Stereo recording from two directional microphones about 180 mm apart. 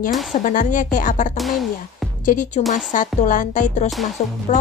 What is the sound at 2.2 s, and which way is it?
Speech, 45° left (ahead or behind).